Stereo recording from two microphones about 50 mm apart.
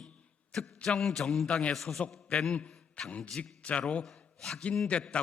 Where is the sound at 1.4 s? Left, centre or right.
Centre.